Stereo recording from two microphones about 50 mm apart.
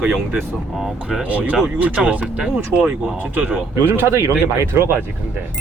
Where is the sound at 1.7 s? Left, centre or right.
Right.